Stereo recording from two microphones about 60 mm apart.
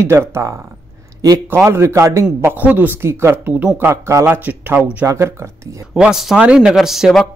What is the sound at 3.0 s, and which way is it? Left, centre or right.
Speech, right.